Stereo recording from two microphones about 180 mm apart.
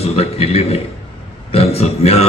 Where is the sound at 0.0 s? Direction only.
35° left (ahead or behind).